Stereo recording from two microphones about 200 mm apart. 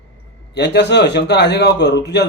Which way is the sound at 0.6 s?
60° left (ahead or behind).